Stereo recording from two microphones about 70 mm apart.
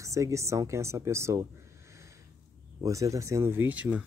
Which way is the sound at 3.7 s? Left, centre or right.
Centre.